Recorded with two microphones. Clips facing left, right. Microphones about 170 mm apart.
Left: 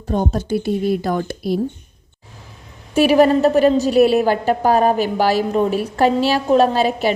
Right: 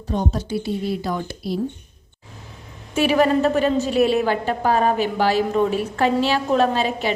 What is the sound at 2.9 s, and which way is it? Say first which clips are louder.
A woman's voice: left 5 dB; 35° left (ahead or behind).